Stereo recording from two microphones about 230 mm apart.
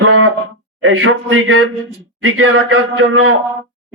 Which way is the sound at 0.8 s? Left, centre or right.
Right.